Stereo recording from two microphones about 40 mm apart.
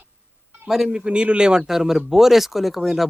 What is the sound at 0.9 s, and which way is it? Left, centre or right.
Speech, right.